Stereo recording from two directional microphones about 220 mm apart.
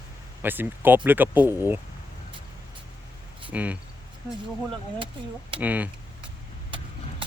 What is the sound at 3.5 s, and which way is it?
Speech, 5° right (ahead or behind).